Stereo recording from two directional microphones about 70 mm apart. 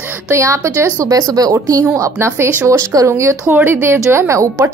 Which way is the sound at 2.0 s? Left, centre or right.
Right.